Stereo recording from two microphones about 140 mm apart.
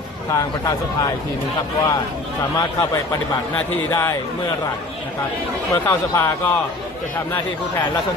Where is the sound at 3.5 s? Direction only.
15° left (ahead or behind).